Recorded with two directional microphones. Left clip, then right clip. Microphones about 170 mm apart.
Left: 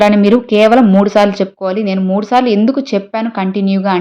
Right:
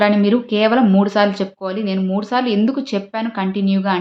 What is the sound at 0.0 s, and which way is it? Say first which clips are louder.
Speech: left 6 dB; 40° left (ahead or behind).